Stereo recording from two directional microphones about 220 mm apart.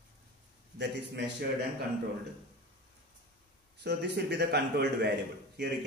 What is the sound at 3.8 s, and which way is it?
A man's voice, 50° right (ahead or behind).